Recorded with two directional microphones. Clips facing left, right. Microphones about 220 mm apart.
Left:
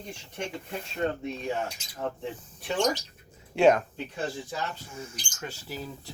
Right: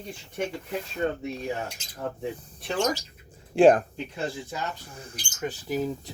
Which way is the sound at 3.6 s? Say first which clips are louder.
Right 3 dB; 30° right (ahead or behind).